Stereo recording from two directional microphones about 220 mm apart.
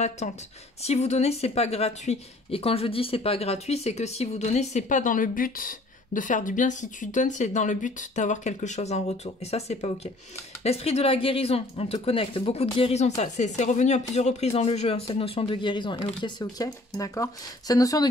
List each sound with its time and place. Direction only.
0.2 s speech: 30° left (ahead or behind); by 18.0 s 15° left (ahead or behind)